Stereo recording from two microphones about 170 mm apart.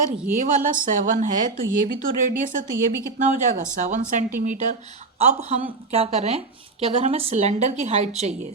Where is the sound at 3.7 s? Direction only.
50° right (ahead or behind).